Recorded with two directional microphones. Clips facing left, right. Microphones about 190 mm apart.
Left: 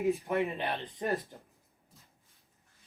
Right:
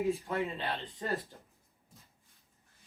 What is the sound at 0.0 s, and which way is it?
Speech, 15° left (ahead or behind).